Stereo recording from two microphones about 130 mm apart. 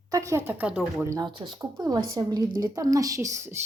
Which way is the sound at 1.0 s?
25° right (ahead or behind).